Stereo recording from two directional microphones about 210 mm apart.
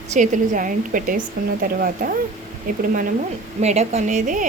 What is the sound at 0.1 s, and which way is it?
A woman's voice, 40° right (ahead or behind).